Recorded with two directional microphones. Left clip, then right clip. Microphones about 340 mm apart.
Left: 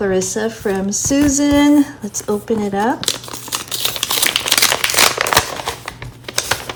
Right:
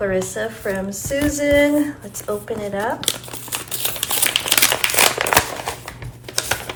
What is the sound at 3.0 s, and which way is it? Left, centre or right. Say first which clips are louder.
Crumpling: left 3 dB; centre.